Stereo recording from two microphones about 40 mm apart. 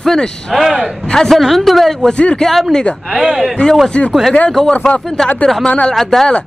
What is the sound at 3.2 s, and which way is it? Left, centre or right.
Speech, centre.